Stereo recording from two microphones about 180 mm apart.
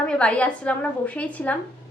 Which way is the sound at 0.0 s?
5° left (ahead or behind).